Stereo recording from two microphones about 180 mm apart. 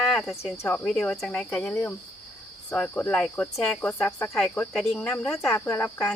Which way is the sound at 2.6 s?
10° left (ahead or behind).